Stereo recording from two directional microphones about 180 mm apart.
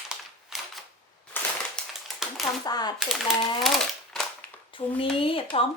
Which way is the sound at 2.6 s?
25° left (ahead or behind).